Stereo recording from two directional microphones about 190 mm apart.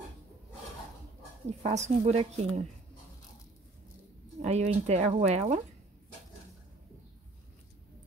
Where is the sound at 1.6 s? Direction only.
35° right (ahead or behind).